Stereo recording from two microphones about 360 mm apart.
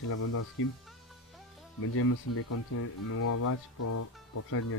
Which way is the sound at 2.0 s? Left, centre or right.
Left.